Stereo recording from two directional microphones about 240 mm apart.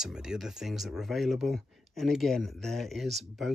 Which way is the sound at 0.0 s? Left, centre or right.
Centre.